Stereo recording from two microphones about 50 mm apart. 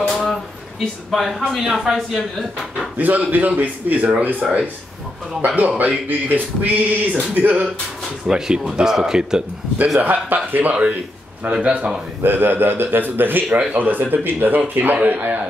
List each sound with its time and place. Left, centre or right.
0.1 s a sound: centre
1.1 s speech: centre
3.0 s speech: right
5.8 s speech: right
8.3 s speech: centre
9.9 s speech: right
10.7 s a man's voice: right
12.2 s speech: right
13.5 s a man's voice: right
13.7 s speech: right